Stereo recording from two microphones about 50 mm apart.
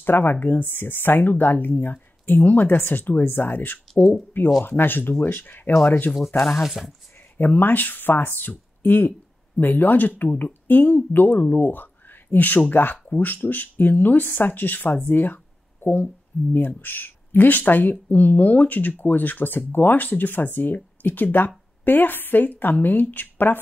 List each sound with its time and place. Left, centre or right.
0.0 s speech: left
6.3 s speech: centre
7.3 s speech: left